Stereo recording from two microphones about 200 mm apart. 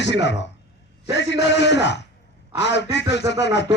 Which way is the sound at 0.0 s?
60° left (ahead or behind).